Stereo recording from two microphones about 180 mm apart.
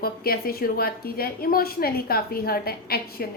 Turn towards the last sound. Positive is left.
turn(degrees=55)  # may be behind; listen again after turning